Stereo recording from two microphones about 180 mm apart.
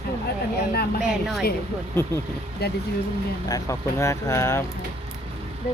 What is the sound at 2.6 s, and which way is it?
Speech, 60° left (ahead or behind).